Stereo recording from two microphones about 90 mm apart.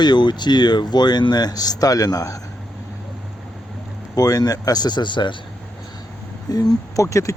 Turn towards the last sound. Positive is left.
turn(degrees=35)  # may be behind; listen again after turning